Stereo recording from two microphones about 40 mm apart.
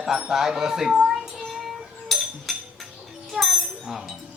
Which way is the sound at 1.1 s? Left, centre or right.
Centre.